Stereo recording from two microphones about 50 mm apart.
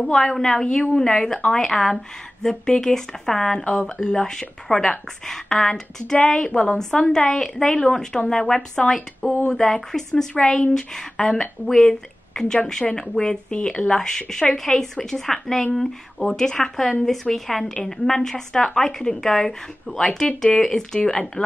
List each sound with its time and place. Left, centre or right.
0.0 s speech: centre